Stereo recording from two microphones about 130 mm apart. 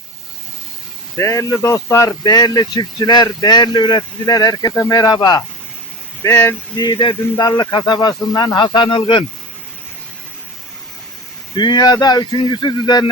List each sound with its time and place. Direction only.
1.2 s speech: 25° left (ahead or behind)
6.2 s a sound: 15° left (ahead or behind)
6.7 s speech: 35° left (ahead or behind)
11.5 s speech: 35° left (ahead or behind)